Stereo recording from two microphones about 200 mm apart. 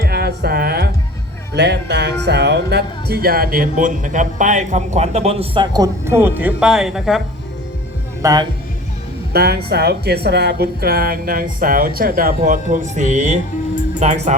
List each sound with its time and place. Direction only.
0.0 s music: 50° right (ahead or behind)
1.5 s speech: 55° right (ahead or behind); by 7.2 s centre (ahead or behind)
8.2 s speech: 20° right (ahead or behind)
9.3 s speech: 50° right (ahead or behind)